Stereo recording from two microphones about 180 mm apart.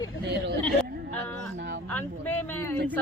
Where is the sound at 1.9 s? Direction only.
10° left (ahead or behind).